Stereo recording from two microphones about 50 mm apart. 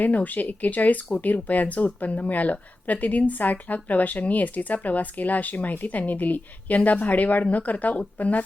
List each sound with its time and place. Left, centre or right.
0.0 s speech: left